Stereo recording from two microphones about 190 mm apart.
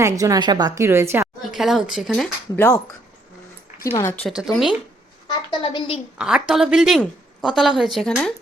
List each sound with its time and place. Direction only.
0.0 s a woman's voice: 15° right (ahead or behind)
1.5 s speech: centre (ahead or behind)
3.9 s speech: 10° left (ahead or behind)
5.3 s a woman's voice: 25° left (ahead or behind)
6.1 s speech: 5° right (ahead or behind)